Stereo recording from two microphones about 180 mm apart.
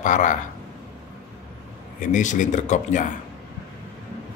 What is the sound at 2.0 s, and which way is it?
A man's voice, 45° left (ahead or behind).